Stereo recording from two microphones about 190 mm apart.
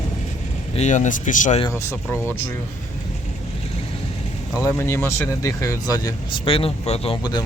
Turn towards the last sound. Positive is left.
turn(degrees=25)  # may be behind; listen again after turning